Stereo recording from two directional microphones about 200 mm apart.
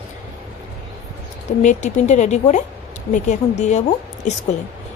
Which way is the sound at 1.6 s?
35° left (ahead or behind).